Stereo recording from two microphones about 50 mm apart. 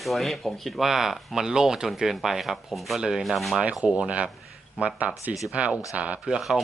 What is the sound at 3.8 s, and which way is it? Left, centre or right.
Speech, right.